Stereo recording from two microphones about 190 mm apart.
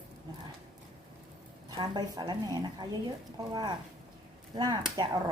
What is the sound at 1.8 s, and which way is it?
A woman's voice, 20° right (ahead or behind).